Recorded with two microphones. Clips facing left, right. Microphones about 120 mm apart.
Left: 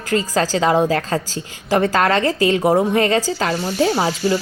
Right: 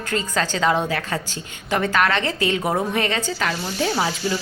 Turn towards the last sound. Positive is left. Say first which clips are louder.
# left 5 dB
turn(degrees=30)  # may be behind; listen again after turning